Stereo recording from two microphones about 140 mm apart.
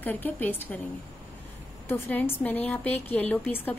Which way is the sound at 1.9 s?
15° left (ahead or behind).